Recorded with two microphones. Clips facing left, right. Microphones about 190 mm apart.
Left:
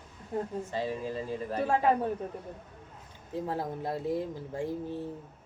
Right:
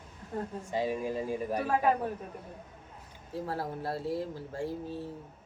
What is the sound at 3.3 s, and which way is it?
Speech, 20° left (ahead or behind).